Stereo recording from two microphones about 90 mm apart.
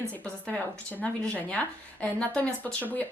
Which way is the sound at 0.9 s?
15° left (ahead or behind).